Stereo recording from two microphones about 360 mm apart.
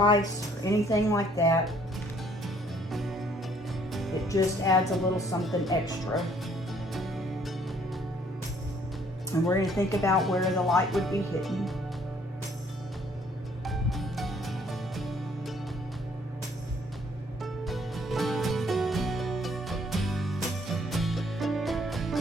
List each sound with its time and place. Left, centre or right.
0.0 s speech: centre
2.9 s music: centre
3.9 s speech: centre
6.9 s music: centre
9.3 s speech: centre
13.7 s music: centre
17.4 s music: centre